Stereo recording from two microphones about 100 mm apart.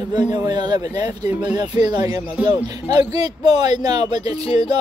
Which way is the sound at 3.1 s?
40° right (ahead or behind).